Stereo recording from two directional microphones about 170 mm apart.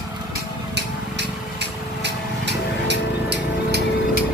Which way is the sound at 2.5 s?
90° right.